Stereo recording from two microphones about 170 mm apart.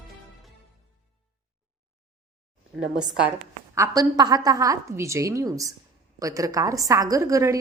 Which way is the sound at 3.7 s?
20° right (ahead or behind).